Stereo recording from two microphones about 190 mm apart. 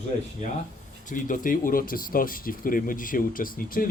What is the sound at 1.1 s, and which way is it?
Speech, 45° left (ahead or behind).